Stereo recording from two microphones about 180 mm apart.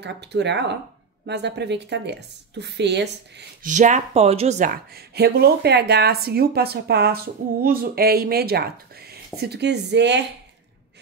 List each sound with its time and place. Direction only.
0.0 s a woman's voice: 70° right (ahead or behind)
3.6 s speech: 45° right (ahead or behind)
4.9 s a woman's voice: 60° right (ahead or behind)